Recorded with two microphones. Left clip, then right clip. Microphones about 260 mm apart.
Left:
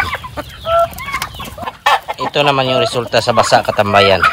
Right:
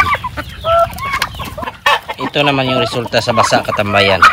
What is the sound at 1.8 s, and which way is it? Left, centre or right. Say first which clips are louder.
Chicken: even; left.